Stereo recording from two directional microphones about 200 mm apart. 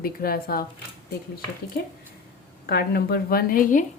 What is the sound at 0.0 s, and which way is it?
Speech, 50° left (ahead or behind).